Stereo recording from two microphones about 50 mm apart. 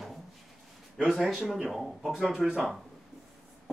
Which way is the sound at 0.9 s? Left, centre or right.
Centre.